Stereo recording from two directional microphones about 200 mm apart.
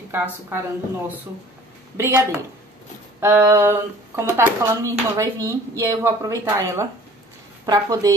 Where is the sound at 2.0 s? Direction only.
10° right (ahead or behind).